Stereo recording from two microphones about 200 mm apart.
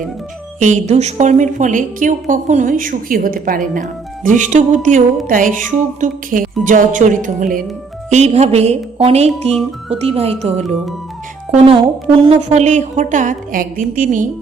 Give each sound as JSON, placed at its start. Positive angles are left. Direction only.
{"t": 0.6, "sound": "a woman's voice", "side_deg": -35}